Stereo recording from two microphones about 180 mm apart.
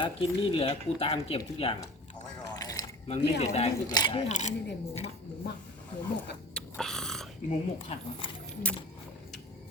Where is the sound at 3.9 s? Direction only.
25° left (ahead or behind).